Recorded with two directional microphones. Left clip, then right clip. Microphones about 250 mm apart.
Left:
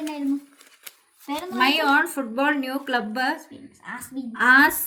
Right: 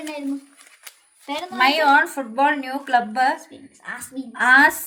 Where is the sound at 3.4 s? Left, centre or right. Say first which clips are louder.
Right 2 dB; right.